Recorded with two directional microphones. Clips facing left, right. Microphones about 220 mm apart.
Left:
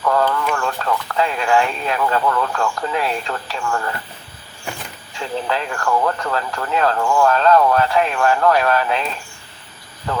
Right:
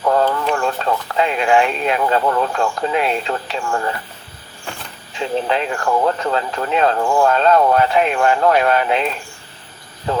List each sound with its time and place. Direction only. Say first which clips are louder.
0.0 s speech: right 2 dB; 25° right (ahead or behind)
5.1 s speech: right 4 dB; 20° right (ahead or behind)